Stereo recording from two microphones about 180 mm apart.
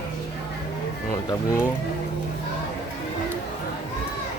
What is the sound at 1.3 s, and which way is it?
Speech, 15° left (ahead or behind).